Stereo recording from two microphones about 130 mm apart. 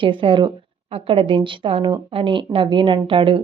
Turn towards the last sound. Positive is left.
turn(degrees=-45)  # may be behind; listen again after turning